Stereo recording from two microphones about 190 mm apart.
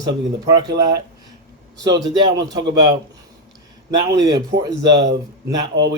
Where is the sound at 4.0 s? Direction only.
20° right (ahead or behind).